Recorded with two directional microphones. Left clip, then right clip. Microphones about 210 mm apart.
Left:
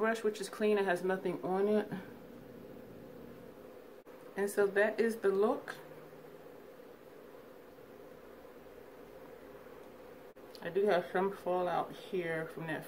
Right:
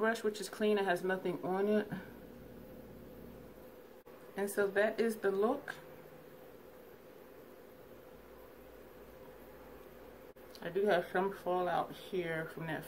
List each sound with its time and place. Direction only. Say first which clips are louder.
0.0 s speech: left 1 dB; 5° right (ahead or behind)
4.4 s speech: left 2 dB; 10° right (ahead or behind)
10.6 s speech: left 1 dB; 10° right (ahead or behind)